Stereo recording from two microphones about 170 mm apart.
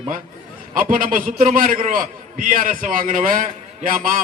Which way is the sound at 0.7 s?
55° right (ahead or behind).